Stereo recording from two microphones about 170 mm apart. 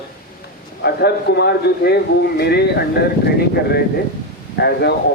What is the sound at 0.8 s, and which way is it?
Speech, 75° left (ahead or behind).